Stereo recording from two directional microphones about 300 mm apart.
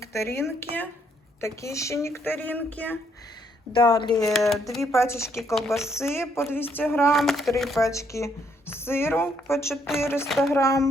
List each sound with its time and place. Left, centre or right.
0.0 s speech: centre
3.8 s speech: centre
4.3 s a sound: centre
4.7 s speech: centre
9.9 s a sound: centre
10.6 s speech: centre